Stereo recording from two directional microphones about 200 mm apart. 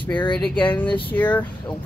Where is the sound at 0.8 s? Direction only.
25° left (ahead or behind).